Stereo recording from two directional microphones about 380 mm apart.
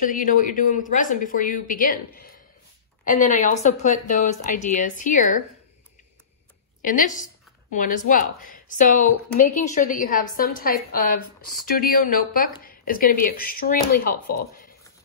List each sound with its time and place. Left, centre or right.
0.0 s a woman's voice: left
6.8 s a woman's voice: left